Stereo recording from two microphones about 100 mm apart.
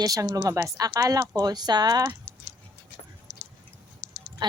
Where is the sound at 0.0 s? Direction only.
35° right (ahead or behind).